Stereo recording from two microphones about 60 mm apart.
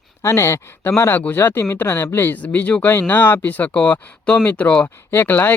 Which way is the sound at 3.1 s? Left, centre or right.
Left.